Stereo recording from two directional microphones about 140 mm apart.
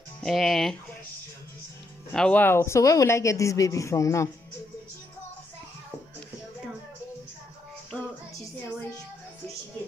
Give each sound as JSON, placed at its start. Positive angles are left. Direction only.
{"t": 0.2, "sound": "speech", "side_deg": 0}
{"t": 2.1, "sound": "speech", "side_deg": 10}